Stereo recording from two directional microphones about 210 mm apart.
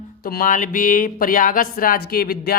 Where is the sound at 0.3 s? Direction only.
40° left (ahead or behind).